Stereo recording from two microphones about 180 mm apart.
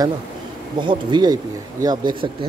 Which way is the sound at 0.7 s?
25° right (ahead or behind).